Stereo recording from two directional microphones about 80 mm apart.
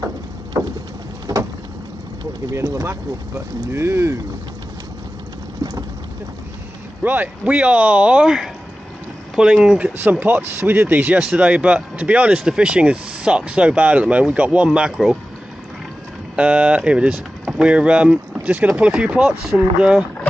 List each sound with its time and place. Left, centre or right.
0.5 s vehicle: right
2.7 s speech: right
7.0 s speech: right
16.3 s speech: centre